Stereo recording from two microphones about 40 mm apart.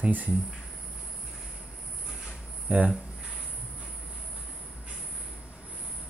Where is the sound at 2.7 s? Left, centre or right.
Right.